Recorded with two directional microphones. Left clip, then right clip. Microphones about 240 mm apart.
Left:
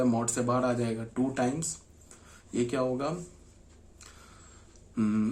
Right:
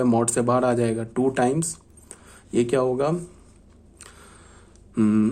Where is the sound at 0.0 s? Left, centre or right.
Right.